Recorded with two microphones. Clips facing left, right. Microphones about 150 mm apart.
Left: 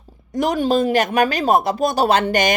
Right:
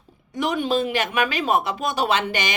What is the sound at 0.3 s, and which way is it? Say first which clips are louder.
Speech: left 5 dB; 40° left (ahead or behind).